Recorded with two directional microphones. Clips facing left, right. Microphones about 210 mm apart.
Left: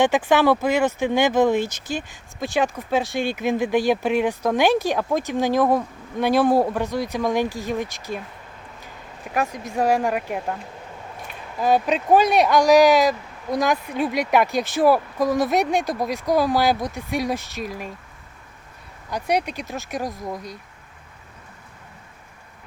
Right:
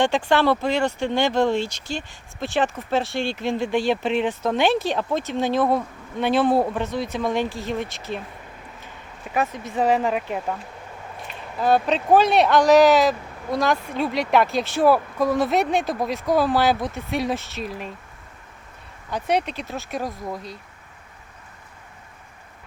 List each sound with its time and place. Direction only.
0.0 s speech: 15° left (ahead or behind)
9.8 s speech: 10° left (ahead or behind)
11.9 s speech: 10° left (ahead or behind)
19.1 s speech: 10° left (ahead or behind)